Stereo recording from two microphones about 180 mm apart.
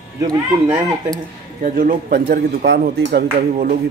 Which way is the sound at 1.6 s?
50° right (ahead or behind).